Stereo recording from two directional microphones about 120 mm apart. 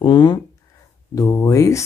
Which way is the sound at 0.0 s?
40° left (ahead or behind).